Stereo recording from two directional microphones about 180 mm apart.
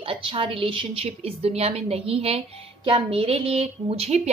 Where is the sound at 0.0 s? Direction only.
30° right (ahead or behind).